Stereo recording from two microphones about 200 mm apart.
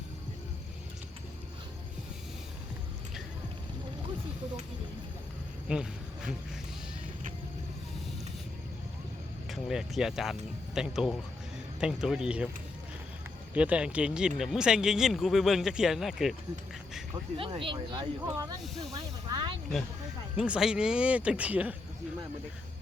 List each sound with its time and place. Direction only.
5.6 s insect: 5° right (ahead or behind)
9.5 s speech: centre (ahead or behind)
13.5 s speech: 5° right (ahead or behind)
17.3 s speech: 25° right (ahead or behind)
18.6 s speech: centre (ahead or behind)
18.9 s speech: 20° right (ahead or behind)
20.3 s speech: 5° right (ahead or behind)